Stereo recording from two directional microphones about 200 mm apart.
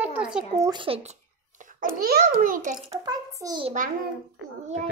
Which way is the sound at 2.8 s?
20° right (ahead or behind).